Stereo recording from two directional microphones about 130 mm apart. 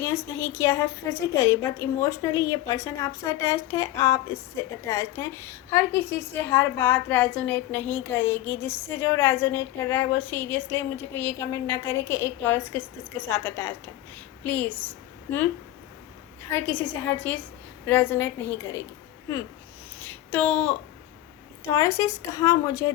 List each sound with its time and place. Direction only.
0.0 s a woman's voice: 20° left (ahead or behind)
16.5 s a woman's voice: 15° left (ahead or behind)
20.0 s a sound: 10° left (ahead or behind)
21.6 s a woman's voice: 20° left (ahead or behind)